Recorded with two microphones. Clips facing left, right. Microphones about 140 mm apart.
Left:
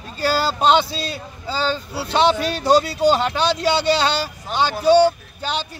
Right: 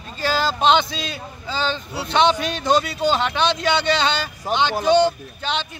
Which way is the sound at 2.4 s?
35° left (ahead or behind).